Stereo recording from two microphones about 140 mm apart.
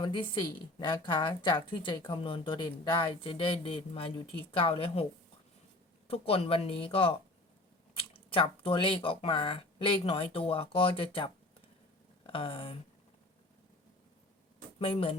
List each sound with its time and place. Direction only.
0.0 s speech: 35° left (ahead or behind)
6.1 s speech: 45° left (ahead or behind)
14.8 s speech: 40° left (ahead or behind)